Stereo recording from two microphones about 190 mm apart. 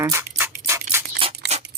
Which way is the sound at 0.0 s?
15° right (ahead or behind).